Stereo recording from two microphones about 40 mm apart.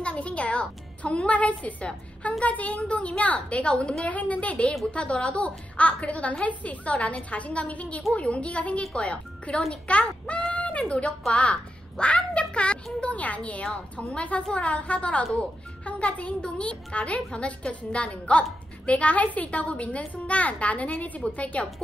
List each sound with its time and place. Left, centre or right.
0.0 s music: left
1.2 s a woman's voice: left
4.0 s a woman's voice: left
10.9 s speech: left
11.5 s a sound: left
13.0 s a woman's voice: left